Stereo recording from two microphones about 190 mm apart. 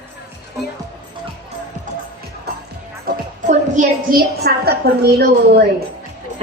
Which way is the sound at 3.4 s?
40° right (ahead or behind).